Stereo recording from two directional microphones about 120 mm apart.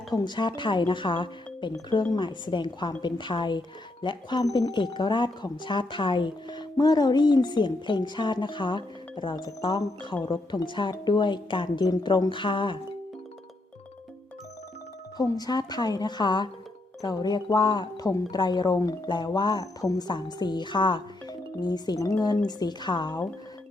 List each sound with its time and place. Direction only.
0.1 s speech: 35° left (ahead or behind)
15.2 s speech: 35° left (ahead or behind)